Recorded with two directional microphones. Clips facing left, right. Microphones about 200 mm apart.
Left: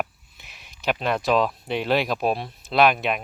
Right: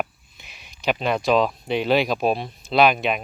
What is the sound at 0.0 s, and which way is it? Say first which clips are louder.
Speech: right 1 dB; centre (ahead or behind).